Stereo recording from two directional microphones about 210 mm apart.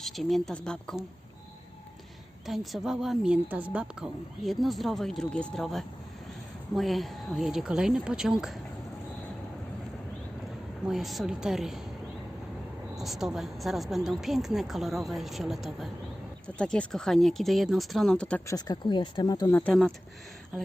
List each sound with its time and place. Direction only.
0.0 s a woman's voice: centre (ahead or behind)
2.5 s a woman's voice: centre (ahead or behind)
10.8 s a woman's voice: centre (ahead or behind)
13.0 s a woman's voice: centre (ahead or behind)